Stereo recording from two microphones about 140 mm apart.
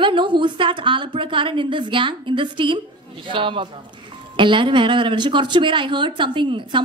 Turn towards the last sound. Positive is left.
turn(degrees=-35)  # may be behind; listen again after turning